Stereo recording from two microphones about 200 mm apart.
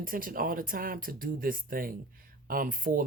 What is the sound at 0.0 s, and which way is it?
Speech, 45° right (ahead or behind).